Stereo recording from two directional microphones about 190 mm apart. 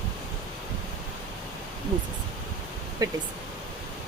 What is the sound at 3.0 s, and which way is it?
Speech, 20° right (ahead or behind).